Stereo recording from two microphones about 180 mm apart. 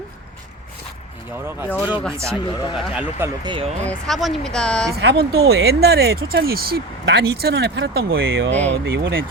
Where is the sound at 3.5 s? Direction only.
30° right (ahead or behind).